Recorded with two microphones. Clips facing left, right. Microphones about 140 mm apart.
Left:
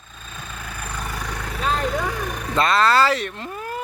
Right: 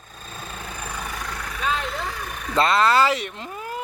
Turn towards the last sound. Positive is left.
turn(degrees=-15)  # may be behind; listen again after turning